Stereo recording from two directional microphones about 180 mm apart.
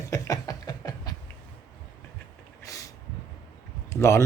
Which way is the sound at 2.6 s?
20° left (ahead or behind).